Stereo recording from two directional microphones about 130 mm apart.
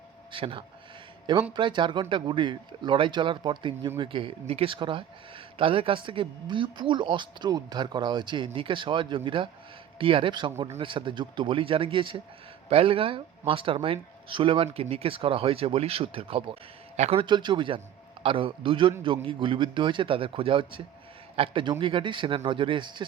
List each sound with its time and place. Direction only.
0.3 s speech: 40° right (ahead or behind)
17.2 s speech: 35° right (ahead or behind)